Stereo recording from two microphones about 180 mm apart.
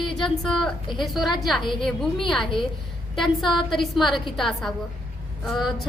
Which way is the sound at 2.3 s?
Centre (ahead or behind).